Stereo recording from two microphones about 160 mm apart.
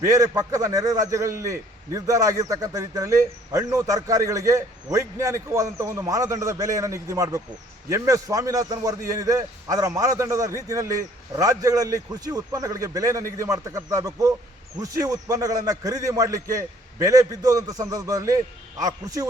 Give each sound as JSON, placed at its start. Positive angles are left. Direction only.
{"t": 0.0, "sound": "a man's voice", "side_deg": -20}